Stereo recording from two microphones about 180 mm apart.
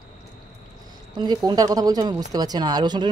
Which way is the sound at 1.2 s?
25° right (ahead or behind).